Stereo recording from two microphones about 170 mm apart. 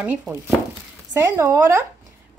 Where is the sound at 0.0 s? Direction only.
10° right (ahead or behind).